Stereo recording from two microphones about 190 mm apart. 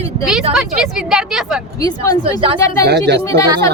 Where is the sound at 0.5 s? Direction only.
5° right (ahead or behind).